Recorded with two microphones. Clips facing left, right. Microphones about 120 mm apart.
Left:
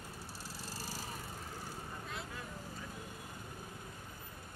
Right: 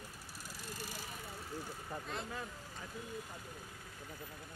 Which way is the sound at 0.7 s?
30° left (ahead or behind).